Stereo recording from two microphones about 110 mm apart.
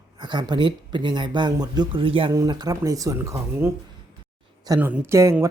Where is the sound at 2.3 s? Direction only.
40° right (ahead or behind).